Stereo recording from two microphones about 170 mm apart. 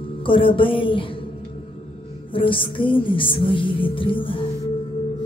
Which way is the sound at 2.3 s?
30° left (ahead or behind).